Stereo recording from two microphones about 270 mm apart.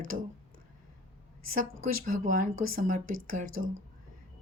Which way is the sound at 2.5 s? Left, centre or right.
Right.